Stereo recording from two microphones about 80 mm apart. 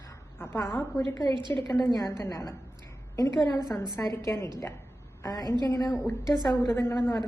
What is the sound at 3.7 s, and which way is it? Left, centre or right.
Speech, left.